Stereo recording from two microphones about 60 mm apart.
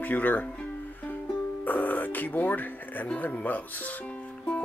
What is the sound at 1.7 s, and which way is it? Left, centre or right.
Speech, left.